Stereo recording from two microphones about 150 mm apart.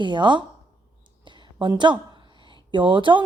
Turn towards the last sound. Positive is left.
turn(degrees=-35)  # may be behind; listen again after turning